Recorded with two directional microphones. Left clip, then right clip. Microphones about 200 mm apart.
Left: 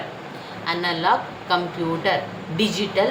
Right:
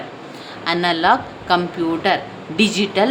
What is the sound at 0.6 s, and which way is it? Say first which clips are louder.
A woman's voice: right 5 dB; 50° right (ahead or behind).